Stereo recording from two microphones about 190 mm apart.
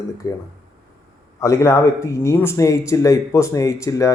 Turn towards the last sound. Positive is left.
turn(degrees=15)  # may be behind; listen again after turning